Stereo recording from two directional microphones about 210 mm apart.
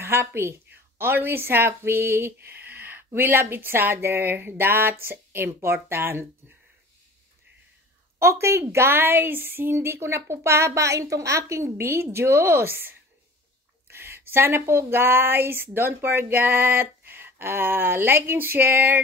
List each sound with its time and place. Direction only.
0.0 s a woman's voice: 10° right (ahead or behind)
8.2 s speech: 15° right (ahead or behind)